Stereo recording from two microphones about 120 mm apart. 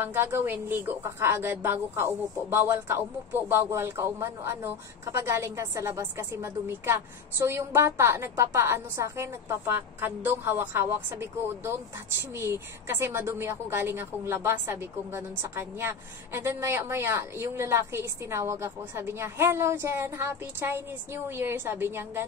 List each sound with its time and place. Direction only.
0.0 s speech: 20° right (ahead or behind)